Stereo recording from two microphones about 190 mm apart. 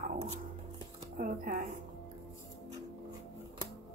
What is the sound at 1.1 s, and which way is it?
Speech, 45° right (ahead or behind).